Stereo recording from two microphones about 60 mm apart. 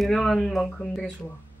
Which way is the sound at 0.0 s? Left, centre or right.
Centre.